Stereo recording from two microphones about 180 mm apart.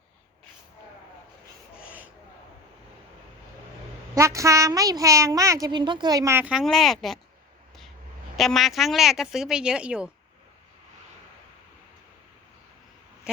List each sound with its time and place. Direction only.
1.8 s a sound: 10° right (ahead or behind)
4.1 s a woman's voice: 15° right (ahead or behind); by 7.2 s centre (ahead or behind)
8.4 s speech: centre (ahead or behind)